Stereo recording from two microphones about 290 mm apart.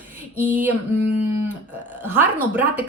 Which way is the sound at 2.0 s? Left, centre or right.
Centre.